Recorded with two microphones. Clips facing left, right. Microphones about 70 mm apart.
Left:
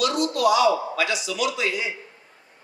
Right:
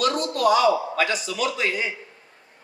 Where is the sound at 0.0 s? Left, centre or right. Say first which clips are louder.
Even; right.